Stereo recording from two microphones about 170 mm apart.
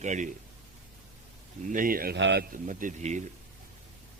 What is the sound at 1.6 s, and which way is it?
Speech, 50° right (ahead or behind).